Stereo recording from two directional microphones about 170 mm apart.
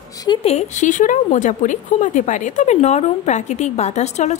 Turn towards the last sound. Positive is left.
turn(degrees=40)  # may be behind; listen again after turning